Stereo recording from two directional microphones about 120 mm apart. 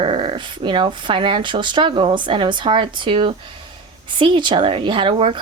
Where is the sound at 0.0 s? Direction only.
45° right (ahead or behind).